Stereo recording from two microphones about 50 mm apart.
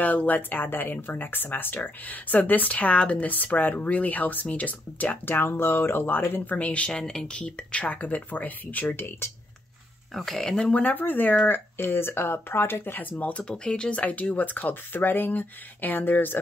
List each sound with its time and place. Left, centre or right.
0.0 s speech: left
6.5 s speech: left
6.9 s speech: centre; by 8.9 s left
8.9 s speech: left
10.1 s speech: centre
10.7 s speech: left
13.2 s speech: left